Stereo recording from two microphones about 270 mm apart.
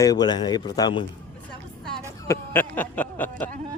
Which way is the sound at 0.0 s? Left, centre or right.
Centre.